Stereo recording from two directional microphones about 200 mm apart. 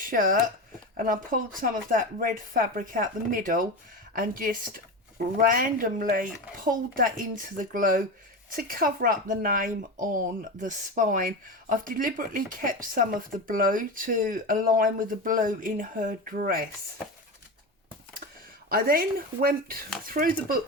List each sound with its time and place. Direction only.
0.0 s speech: 45° right (ahead or behind)
18.7 s speech: 45° right (ahead or behind)